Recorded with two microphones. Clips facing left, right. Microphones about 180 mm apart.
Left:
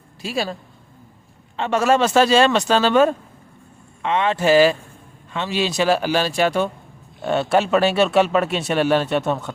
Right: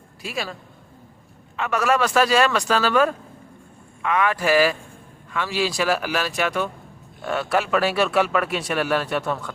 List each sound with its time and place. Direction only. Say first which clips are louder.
0.2 s a man's voice: left 5 dB; 30° left (ahead or behind)
1.5 s a man's voice: left 4 dB; 30° left (ahead or behind)